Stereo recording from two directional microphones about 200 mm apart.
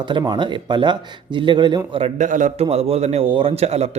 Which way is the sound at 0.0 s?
25° right (ahead or behind).